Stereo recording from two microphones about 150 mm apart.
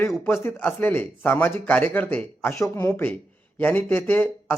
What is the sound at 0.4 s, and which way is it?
Speech, 15° left (ahead or behind).